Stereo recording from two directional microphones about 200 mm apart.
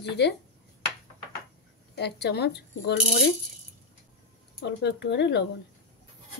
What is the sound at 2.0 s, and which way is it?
A woman's voice, 55° left (ahead or behind).